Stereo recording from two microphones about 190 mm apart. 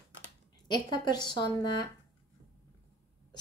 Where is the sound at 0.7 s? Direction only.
20° left (ahead or behind).